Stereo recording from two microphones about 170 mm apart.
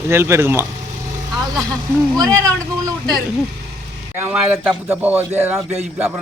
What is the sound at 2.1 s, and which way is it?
Speech, 20° right (ahead or behind).